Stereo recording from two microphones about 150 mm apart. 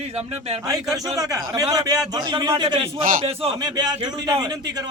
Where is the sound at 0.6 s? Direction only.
20° right (ahead or behind); by 3.5 s 40° right (ahead or behind).